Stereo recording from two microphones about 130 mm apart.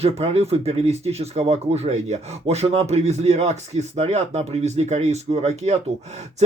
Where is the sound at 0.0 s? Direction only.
50° right (ahead or behind).